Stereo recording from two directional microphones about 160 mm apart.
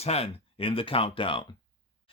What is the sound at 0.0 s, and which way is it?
Speech, 40° left (ahead or behind).